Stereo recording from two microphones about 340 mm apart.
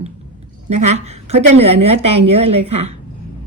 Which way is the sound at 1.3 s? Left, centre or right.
Right.